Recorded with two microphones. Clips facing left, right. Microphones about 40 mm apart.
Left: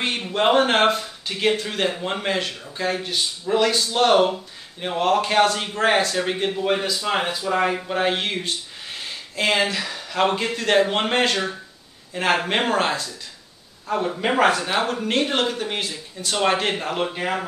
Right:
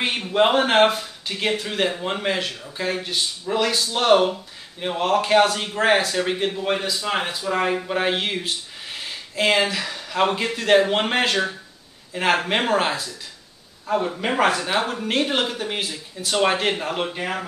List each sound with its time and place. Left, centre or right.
0.3 s speech: centre
14.1 s speech: centre
17.2 s speech: centre